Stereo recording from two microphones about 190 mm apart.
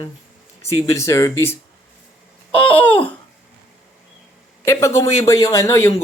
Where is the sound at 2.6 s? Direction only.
10° left (ahead or behind).